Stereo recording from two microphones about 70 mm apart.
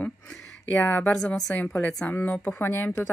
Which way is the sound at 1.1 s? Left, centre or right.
Centre.